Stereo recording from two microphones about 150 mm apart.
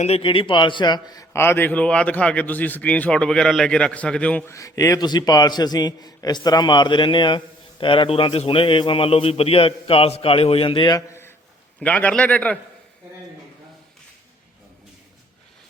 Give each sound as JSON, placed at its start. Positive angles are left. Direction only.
{"t": 0.0, "sound": "a man's voice", "side_deg": 40}
{"t": 4.5, "sound": "a man's voice", "side_deg": 20}